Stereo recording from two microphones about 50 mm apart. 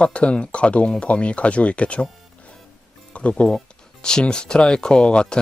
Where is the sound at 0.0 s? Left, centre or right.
Left.